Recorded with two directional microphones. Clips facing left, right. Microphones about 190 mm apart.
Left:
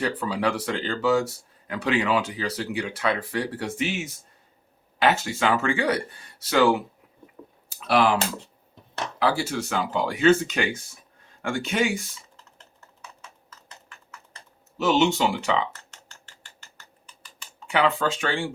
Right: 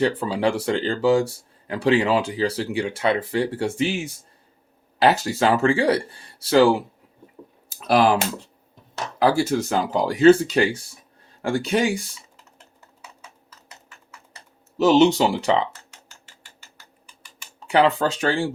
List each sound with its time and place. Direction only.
0.0 s speech: 30° right (ahead or behind)
7.9 s speech: 40° right (ahead or behind)
9.1 s speech: 40° right (ahead or behind)
14.8 s speech: 40° right (ahead or behind)
15.9 s mechanisms: 10° right (ahead or behind)
17.7 s speech: 35° right (ahead or behind)